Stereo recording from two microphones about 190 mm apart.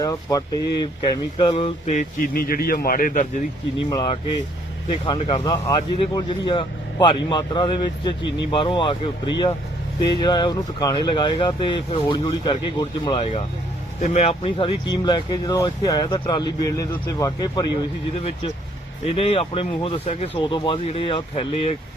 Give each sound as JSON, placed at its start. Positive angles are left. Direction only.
{"t": 0.0, "sound": "speech", "side_deg": 20}
{"t": 2.2, "sound": "a man's voice", "side_deg": 50}
{"t": 3.8, "sound": "speech", "side_deg": 20}
{"t": 19.0, "sound": "speech", "side_deg": 30}